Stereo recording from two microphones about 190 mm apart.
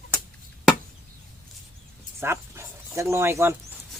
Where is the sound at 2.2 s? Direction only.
15° right (ahead or behind).